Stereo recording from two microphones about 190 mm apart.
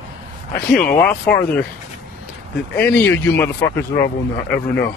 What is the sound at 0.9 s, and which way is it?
Speech, 10° left (ahead or behind).